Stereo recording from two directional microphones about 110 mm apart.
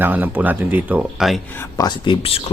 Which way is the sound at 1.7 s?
40° left (ahead or behind).